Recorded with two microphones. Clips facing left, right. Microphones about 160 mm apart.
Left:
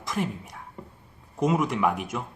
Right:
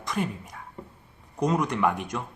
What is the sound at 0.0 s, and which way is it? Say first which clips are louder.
A man's voice: even; centre (ahead or behind).